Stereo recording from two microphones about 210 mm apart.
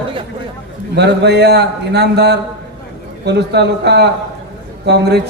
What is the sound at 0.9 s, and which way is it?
A man's voice, 55° right (ahead or behind).